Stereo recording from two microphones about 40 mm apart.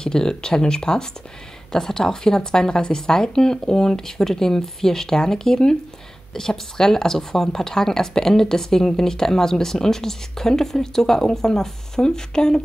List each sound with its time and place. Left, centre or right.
0.0 s speech: centre